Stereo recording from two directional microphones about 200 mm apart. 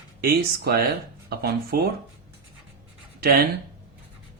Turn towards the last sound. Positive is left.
turn(degrees=-50)  # may be behind; listen again after turning